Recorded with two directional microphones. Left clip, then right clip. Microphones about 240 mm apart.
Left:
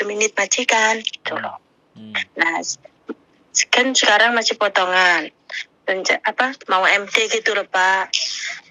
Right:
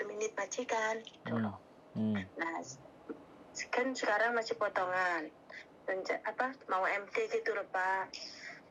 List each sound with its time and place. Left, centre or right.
0.0 s a woman's voice: left